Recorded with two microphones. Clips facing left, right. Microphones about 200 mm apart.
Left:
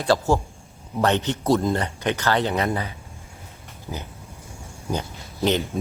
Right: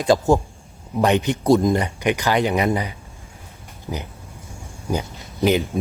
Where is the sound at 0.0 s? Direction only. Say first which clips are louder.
Right 4 dB; 15° right (ahead or behind).